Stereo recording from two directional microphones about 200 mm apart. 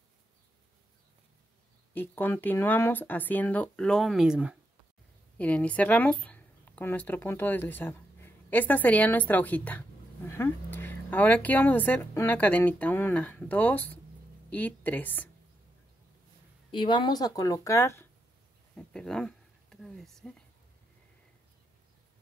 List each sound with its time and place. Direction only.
2.0 s speech: 10° left (ahead or behind)
5.4 s a woman's voice: 5° left (ahead or behind)
16.7 s speech: 25° left (ahead or behind); by 20.4 s centre (ahead or behind)